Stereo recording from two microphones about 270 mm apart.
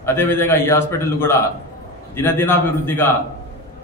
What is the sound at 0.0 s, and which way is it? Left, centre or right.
A man's voice, centre.